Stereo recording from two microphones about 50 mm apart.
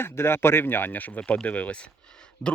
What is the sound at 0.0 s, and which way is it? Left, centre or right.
Speech, left.